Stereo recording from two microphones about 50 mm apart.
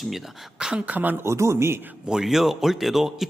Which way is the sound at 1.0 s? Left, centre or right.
Right.